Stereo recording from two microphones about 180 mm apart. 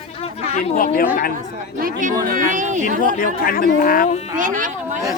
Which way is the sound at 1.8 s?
45° right (ahead or behind).